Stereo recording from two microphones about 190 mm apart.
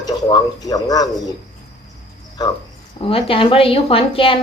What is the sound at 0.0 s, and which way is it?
A man's voice, 20° left (ahead or behind).